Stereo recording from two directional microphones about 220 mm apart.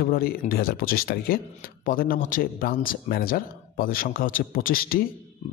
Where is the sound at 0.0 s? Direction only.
45° left (ahead or behind).